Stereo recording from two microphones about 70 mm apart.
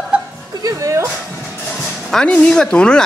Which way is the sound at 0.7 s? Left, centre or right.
Right.